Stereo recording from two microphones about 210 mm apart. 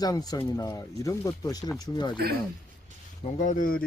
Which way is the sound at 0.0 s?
20° left (ahead or behind).